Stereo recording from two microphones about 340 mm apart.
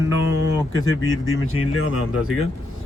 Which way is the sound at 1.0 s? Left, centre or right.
Left.